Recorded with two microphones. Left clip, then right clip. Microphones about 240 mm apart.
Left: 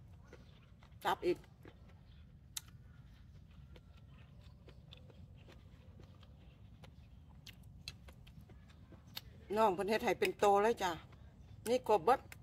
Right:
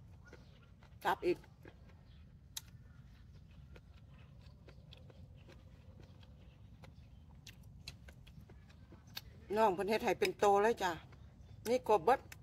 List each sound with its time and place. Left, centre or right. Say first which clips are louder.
1.0 s dog: right 1 dB; centre
9.1 s a woman's voice: right 1 dB; centre